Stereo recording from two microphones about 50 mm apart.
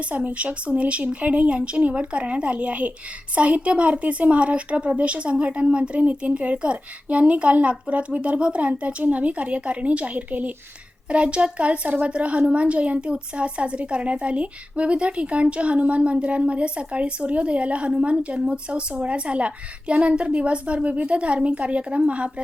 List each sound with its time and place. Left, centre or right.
0.2 s speech: right